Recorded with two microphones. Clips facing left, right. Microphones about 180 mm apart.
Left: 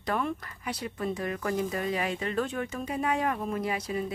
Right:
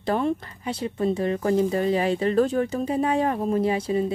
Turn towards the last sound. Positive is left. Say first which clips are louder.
# right 8 dB
turn(degrees=-30)  # may be behind; listen again after turning